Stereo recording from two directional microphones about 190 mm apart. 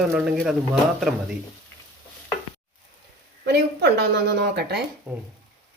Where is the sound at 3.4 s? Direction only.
65° right (ahead or behind).